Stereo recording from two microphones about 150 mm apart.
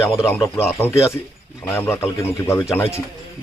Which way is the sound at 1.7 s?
15° left (ahead or behind).